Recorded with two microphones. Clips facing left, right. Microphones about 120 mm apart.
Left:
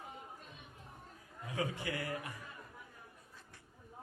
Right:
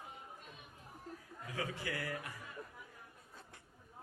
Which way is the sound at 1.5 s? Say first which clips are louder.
Left 3 dB; 25° left (ahead or behind).